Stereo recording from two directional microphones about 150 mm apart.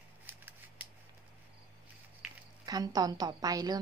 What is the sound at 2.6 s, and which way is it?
A woman's voice, 25° right (ahead or behind).